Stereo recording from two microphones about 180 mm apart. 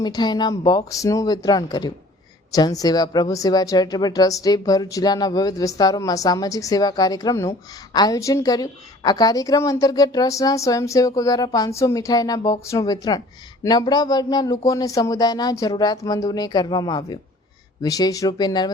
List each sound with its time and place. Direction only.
0.0 s a woman's voice: 25° left (ahead or behind)